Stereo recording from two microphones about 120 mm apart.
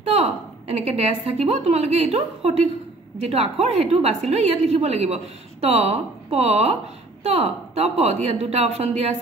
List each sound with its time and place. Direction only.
0.0 s a woman's voice: 65° right (ahead or behind)